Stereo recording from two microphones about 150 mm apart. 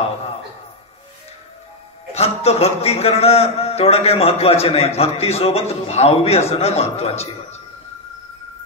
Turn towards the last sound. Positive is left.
turn(degrees=45)  # may be behind; listen again after turning